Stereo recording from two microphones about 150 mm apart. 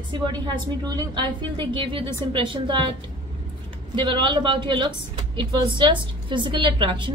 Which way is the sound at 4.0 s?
30° right (ahead or behind).